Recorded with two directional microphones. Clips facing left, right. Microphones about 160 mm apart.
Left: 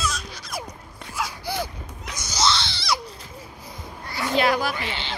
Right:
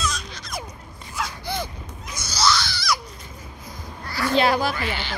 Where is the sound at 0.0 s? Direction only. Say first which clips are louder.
Even; 5° left (ahead or behind).